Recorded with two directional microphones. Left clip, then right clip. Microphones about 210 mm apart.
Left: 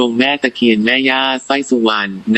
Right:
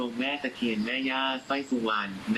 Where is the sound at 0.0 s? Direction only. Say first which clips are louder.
Left 17 dB; 50° left (ahead or behind).